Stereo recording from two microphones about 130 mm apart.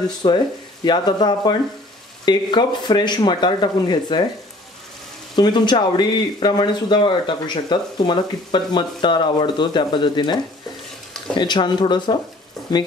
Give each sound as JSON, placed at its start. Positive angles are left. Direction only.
{"t": 0.2, "sound": "speech", "side_deg": 45}
{"t": 0.8, "sound": "speech", "side_deg": 35}
{"t": 5.3, "sound": "speech", "side_deg": 35}